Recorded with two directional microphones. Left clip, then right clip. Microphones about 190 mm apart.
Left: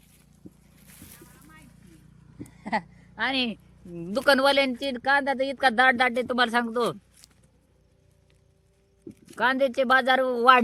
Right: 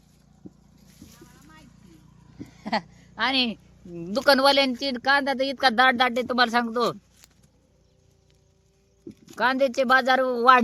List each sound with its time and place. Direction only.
2.4 s a woman's voice: 10° right (ahead or behind)
7.2 s a sound: 20° left (ahead or behind)
9.0 s speech: centre (ahead or behind)